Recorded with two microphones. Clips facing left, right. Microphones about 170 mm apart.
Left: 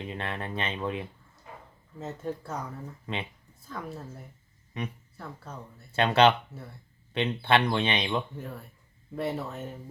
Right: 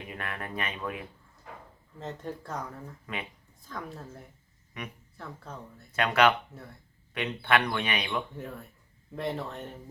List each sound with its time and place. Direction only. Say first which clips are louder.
0.0 s speech: left 3 dB; 25° left (ahead or behind)
2.0 s speech: left 3 dB; 5° left (ahead or behind)
3.1 s speech: left 3 dB; 25° left (ahead or behind)
3.7 s speech: left 2 dB; 5° left (ahead or behind)
4.7 s speech: left 5 dB; 30° left (ahead or behind)
8.4 s speech: even; 5° left (ahead or behind)